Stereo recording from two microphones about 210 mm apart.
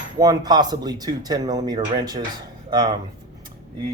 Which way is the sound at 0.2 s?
20° right (ahead or behind).